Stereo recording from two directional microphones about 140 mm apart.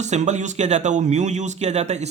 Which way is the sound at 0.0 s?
55° right (ahead or behind).